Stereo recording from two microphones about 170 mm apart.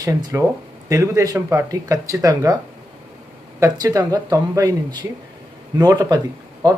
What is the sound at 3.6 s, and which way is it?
Speech, 20° right (ahead or behind).